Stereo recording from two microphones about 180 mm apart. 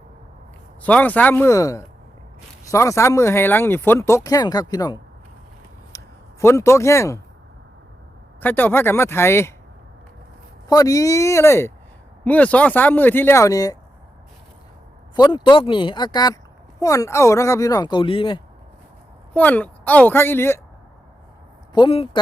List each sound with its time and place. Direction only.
0.8 s speech: 10° left (ahead or behind)
5.9 s a sound: 15° left (ahead or behind)
6.4 s speech: 15° left (ahead or behind)
8.4 s speech: 10° left (ahead or behind)
10.7 s speech: 20° left (ahead or behind)
15.1 s speech: 25° left (ahead or behind)
19.3 s speech: 10° left (ahead or behind)
21.7 s speech: 25° left (ahead or behind)